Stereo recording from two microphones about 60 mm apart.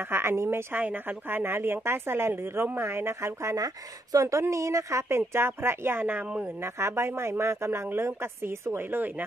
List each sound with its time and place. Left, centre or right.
0.1 s speech: right
0.7 s a woman's voice: right
3.5 s a woman's voice: right